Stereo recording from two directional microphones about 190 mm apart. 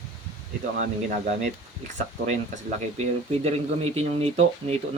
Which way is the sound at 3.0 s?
35° right (ahead or behind).